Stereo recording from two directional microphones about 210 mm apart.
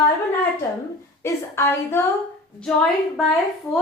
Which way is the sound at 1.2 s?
10° left (ahead or behind).